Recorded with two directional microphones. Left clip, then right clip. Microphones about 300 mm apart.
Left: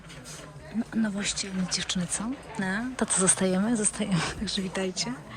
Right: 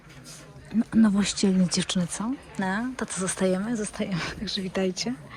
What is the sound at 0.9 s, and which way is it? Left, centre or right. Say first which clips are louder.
Speech: right 6 dB; centre.